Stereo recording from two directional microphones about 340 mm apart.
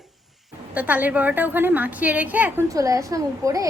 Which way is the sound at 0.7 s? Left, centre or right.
Centre.